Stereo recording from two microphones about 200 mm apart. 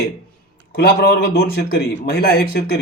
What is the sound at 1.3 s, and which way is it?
A man's voice, 50° left (ahead or behind).